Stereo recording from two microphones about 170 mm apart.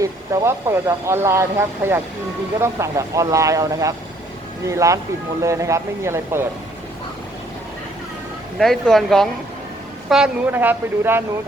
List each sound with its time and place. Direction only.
0.0 s speech: 15° right (ahead or behind)
8.5 s speech: centre (ahead or behind)